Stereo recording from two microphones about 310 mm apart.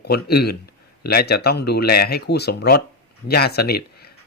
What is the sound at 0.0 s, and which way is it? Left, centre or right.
Speech, left.